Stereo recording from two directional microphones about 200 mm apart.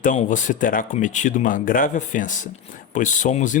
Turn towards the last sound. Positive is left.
turn(degrees=40)  # may be behind; listen again after turning